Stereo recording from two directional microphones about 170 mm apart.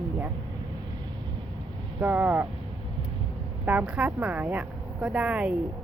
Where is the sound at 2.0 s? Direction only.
10° right (ahead or behind).